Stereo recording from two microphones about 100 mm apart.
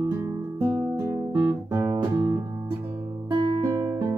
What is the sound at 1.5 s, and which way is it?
Music, 30° right (ahead or behind).